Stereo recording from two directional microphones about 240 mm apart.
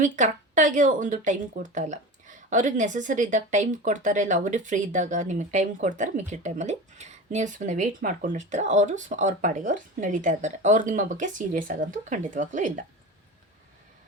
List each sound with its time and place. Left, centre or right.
0.0 s speech: right